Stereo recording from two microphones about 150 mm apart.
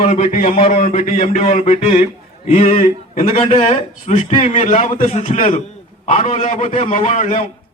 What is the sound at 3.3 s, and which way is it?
A man's voice, 45° left (ahead or behind).